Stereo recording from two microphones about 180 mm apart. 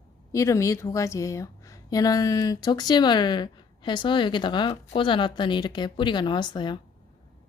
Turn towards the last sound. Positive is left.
turn(degrees=25)  # may be behind; listen again after turning